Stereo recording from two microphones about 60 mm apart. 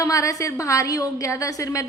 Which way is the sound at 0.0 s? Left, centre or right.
Left.